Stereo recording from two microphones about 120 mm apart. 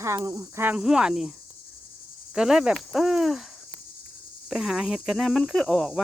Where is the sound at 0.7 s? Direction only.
5° right (ahead or behind).